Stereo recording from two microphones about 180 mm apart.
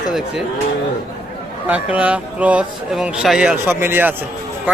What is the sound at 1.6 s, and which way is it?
A man's voice, 10° right (ahead or behind).